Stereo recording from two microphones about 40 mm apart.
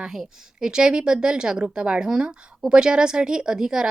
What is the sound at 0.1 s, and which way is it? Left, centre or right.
Speech, centre.